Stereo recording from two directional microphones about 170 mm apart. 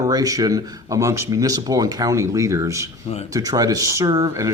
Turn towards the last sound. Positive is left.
turn(degrees=-20)  # may be behind; listen again after turning